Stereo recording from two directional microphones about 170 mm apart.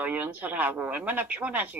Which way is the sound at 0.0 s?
10° right (ahead or behind).